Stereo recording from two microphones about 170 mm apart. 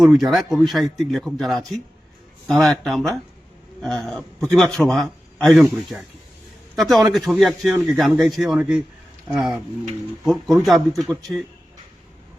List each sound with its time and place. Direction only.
0.0 s a man's voice: centre (ahead or behind)